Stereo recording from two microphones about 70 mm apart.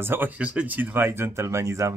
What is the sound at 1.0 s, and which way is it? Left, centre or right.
Speech, right.